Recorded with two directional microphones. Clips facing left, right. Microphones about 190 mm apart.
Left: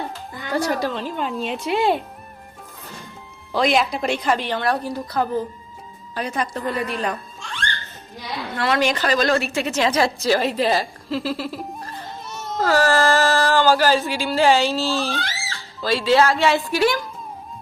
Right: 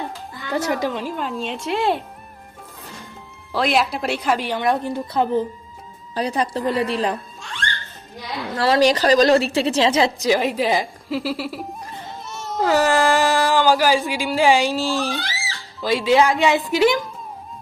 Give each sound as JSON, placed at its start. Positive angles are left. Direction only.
{"t": 0.1, "sound": "a woman's voice", "side_deg": -20}
{"t": 3.5, "sound": "a woman's voice", "side_deg": 0}
{"t": 8.5, "sound": "a woman's voice", "side_deg": -35}